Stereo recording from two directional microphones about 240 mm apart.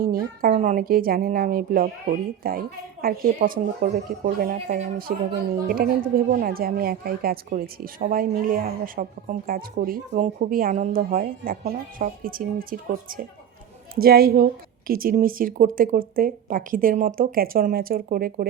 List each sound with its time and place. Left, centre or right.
0.0 s a woman's voice: right